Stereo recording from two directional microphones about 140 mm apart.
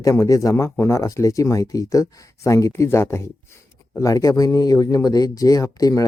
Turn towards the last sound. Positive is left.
turn(degrees=25)  # may be behind; listen again after turning